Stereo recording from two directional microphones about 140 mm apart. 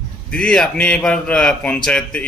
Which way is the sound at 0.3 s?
5° left (ahead or behind).